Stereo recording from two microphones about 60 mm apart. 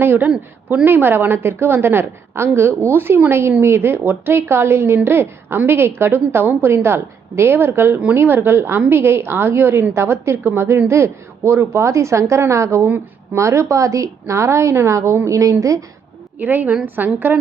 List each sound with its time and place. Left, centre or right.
0.0 s a woman's voice: right
16.4 s a woman's voice: right